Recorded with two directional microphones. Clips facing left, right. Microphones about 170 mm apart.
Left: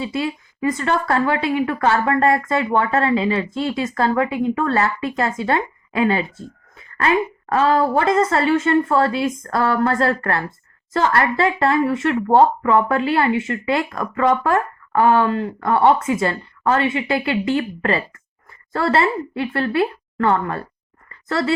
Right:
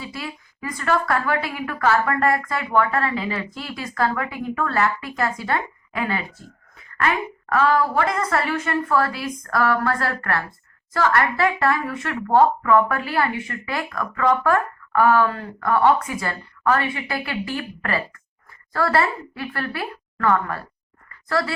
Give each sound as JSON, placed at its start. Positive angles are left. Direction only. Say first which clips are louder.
{"t": 0.0, "sound": "speech", "louder": "left 9 dB", "side_deg": 25}
{"t": 7.5, "sound": "speech", "louder": "left 3 dB", "side_deg": 25}
{"t": 21.1, "sound": "a sound", "louder": "left 2 dB", "side_deg": 25}